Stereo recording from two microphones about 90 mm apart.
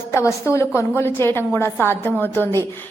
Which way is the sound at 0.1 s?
30° left (ahead or behind).